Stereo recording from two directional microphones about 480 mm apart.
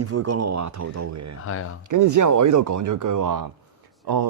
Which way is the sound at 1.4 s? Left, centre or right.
Left.